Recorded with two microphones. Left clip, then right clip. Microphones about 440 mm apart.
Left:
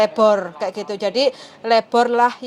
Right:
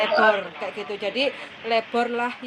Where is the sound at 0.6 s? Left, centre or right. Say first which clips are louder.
Left 6 dB; left.